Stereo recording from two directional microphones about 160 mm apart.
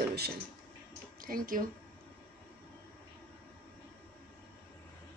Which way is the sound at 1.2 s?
60° right (ahead or behind).